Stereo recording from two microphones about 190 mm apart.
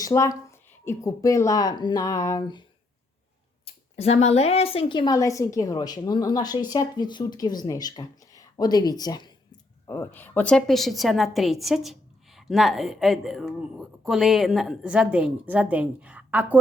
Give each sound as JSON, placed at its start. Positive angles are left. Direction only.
{"t": 0.0, "sound": "a woman's voice", "side_deg": 15}
{"t": 3.7, "sound": "a woman's voice", "side_deg": 35}